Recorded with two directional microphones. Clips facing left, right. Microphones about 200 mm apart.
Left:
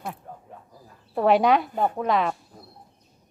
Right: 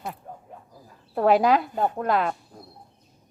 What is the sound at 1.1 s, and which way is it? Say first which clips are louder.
A woman's voice: even; centre (ahead or behind).